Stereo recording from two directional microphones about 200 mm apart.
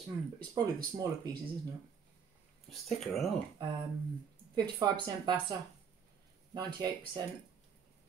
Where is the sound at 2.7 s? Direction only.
Centre (ahead or behind).